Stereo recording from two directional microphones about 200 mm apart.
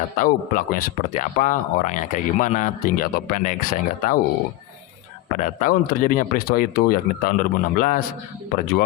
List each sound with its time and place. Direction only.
0.2 s speech: 40° left (ahead or behind)
5.4 s speech: 40° left (ahead or behind)